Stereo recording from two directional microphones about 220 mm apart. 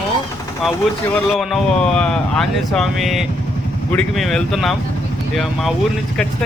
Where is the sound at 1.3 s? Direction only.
Centre (ahead or behind).